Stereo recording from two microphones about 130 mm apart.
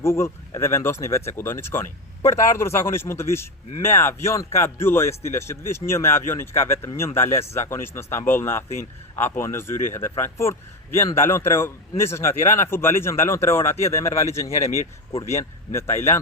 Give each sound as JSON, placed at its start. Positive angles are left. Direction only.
{"t": 0.0, "sound": "speech", "side_deg": 20}